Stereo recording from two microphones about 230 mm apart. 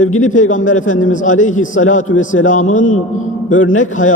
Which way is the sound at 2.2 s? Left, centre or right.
Left.